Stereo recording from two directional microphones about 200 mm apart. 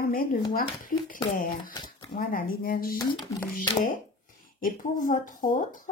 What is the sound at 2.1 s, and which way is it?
Speech, 45° left (ahead or behind).